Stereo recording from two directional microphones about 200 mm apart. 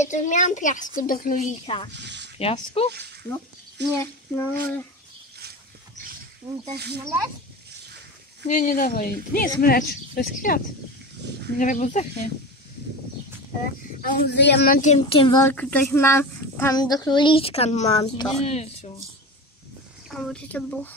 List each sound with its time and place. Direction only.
0.0 s speech: 35° left (ahead or behind)
1.9 s speech: 60° right (ahead or behind)
2.3 s speech: 30° left (ahead or behind)
2.9 s speech: 55° right (ahead or behind)
3.9 s a sound: 10° left (ahead or behind)
6.7 s speech: 55° right (ahead or behind)
8.5 s speech: 40° left (ahead or behind)
14.1 s speech: 55° left (ahead or behind); by 15.4 s 25° left (ahead or behind)
15.4 s speech: 5° left (ahead or behind); by 18.0 s 35° left (ahead or behind)
18.0 s speech: 20° left (ahead or behind)
18.4 s speech: 30° left (ahead or behind)
20.2 s a sound: 5° left (ahead or behind)